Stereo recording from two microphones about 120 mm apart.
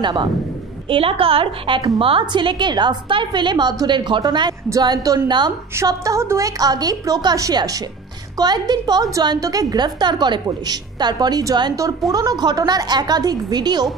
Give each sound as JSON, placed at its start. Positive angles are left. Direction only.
{"t": 0.0, "sound": "a woman's voice", "side_deg": -40}